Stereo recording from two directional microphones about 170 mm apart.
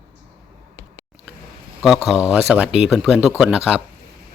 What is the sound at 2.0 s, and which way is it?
Speech, 5° right (ahead or behind).